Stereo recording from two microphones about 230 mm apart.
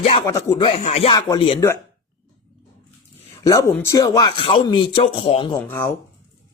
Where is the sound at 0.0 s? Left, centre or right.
Left.